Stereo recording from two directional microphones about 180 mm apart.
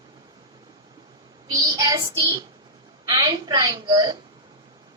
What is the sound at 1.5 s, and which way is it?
A woman's voice, 20° right (ahead or behind).